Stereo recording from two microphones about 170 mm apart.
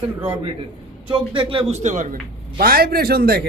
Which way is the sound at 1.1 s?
30° right (ahead or behind).